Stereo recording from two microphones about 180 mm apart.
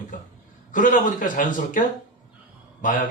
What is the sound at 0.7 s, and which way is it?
Speech, 45° left (ahead or behind).